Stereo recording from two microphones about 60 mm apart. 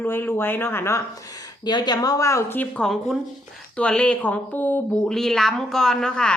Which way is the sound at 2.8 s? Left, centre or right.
Centre.